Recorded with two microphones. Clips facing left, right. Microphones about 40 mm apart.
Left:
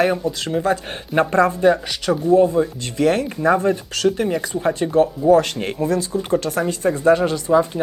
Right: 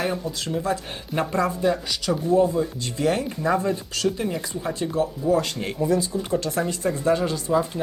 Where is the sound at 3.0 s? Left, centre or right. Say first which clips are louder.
Left 6 dB; left.